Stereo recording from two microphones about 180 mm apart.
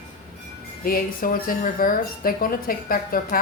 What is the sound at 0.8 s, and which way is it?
A woman's voice, 55° left (ahead or behind).